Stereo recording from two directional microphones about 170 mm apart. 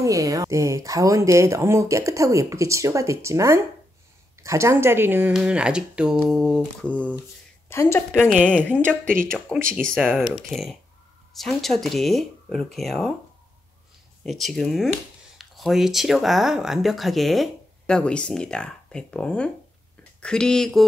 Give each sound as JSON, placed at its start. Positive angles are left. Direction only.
{"t": 0.0, "sound": "a woman's voice", "side_deg": -20}
{"t": 9.0, "sound": "speech", "side_deg": -55}
{"t": 9.5, "sound": "speech", "side_deg": 0}
{"t": 14.2, "sound": "speech", "side_deg": 0}